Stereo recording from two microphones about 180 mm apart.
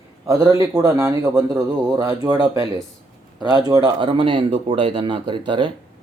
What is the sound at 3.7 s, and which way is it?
Speech, 25° right (ahead or behind).